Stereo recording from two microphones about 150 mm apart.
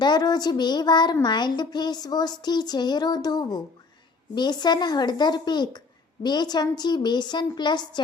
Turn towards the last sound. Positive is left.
turn(degrees=30)  # may be behind; listen again after turning